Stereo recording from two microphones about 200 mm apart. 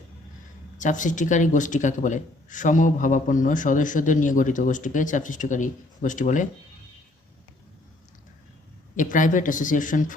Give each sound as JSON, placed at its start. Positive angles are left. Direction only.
{"t": 0.8, "sound": "speech", "side_deg": 40}
{"t": 9.0, "sound": "speech", "side_deg": 40}